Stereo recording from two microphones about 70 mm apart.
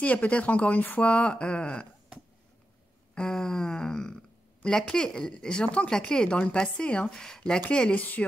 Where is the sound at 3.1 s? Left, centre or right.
Centre.